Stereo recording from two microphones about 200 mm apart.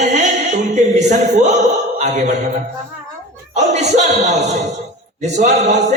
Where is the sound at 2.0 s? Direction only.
35° right (ahead or behind).